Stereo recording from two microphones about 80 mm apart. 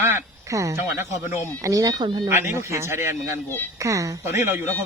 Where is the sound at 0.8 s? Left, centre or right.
Right.